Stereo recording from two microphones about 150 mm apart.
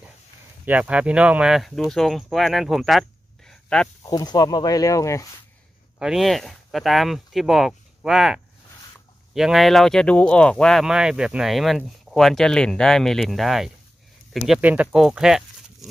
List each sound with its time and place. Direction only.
0.7 s speech: 10° right (ahead or behind)
4.0 s speech: 25° left (ahead or behind)
5.9 s speech: 5° right (ahead or behind)